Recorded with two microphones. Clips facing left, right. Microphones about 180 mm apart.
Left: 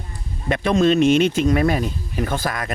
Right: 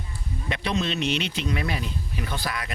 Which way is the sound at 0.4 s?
50° left (ahead or behind).